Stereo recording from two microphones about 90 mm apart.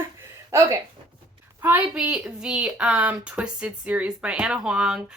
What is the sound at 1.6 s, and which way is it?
A woman's voice, 15° right (ahead or behind).